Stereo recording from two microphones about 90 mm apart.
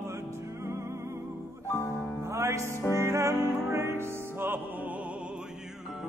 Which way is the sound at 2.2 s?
30° right (ahead or behind).